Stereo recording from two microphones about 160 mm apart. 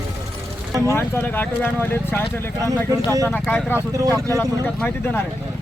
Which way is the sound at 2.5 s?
20° right (ahead or behind).